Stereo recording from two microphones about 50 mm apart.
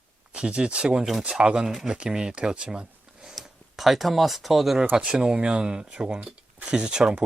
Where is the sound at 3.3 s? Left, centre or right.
Centre.